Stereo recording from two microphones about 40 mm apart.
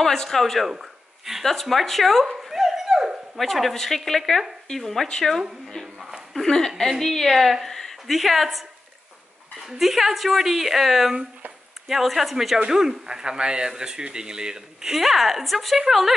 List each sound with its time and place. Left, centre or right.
0.0 s speech: centre
0.7 s a sound: centre
1.4 s speech: centre
2.2 s dog: centre
3.3 s speech: centre
6.4 s speech: centre
7.6 s a sound: centre
8.2 s speech: centre
12.6 s speech: centre
15.0 s speech: centre